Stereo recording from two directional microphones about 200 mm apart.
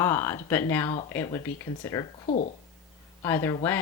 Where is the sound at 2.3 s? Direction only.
40° left (ahead or behind).